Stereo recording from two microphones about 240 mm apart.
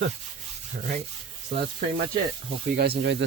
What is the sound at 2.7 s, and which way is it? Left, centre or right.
Speech, right.